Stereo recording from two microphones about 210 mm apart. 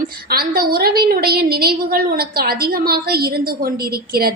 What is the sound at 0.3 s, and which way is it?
A woman's voice, 45° right (ahead or behind).